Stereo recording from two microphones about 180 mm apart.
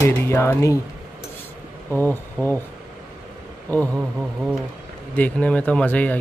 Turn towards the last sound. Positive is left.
turn(degrees=10)  # may be behind; listen again after turning